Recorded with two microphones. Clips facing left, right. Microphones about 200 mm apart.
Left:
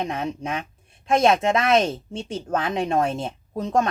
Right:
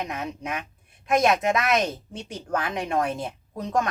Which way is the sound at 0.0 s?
30° left (ahead or behind).